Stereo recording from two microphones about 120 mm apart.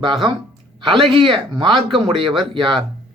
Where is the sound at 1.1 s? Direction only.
45° right (ahead or behind).